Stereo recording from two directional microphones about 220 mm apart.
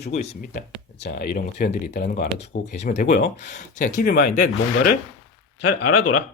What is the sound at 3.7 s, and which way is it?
Speech, 35° left (ahead or behind).